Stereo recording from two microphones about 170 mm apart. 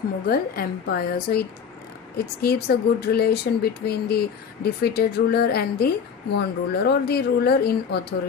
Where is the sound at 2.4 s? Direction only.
70° left (ahead or behind).